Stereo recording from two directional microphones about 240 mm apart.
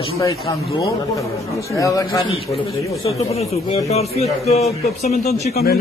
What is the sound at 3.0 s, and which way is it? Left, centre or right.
Speech, left.